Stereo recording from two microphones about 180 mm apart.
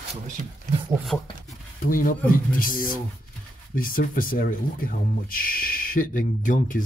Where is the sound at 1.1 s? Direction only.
5° left (ahead or behind).